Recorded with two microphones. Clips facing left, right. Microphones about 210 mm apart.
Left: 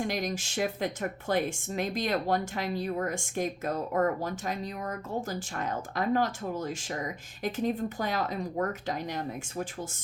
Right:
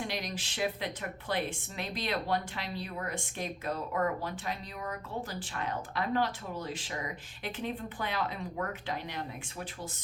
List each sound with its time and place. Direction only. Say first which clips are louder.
0.0 s speech: left 6 dB; 45° left (ahead or behind)